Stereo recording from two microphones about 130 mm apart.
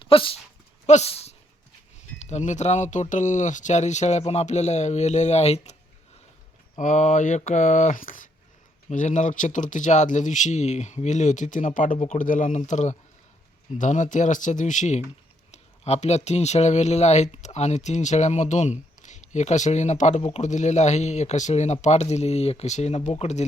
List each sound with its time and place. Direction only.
0.0 s speech: 45° left (ahead or behind)
0.9 s speech: 55° left (ahead or behind)
2.0 s speech: 65° left (ahead or behind)
6.7 s speech: 70° left (ahead or behind); by 8.3 s 90° left
8.9 s speech: 65° left (ahead or behind)
15.5 s speech: 55° left (ahead or behind)